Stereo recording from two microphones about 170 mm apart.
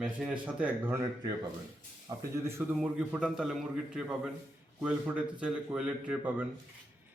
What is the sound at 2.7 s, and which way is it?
A man's voice, 5° right (ahead or behind).